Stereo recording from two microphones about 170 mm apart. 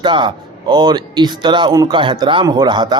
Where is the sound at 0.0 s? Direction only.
30° right (ahead or behind).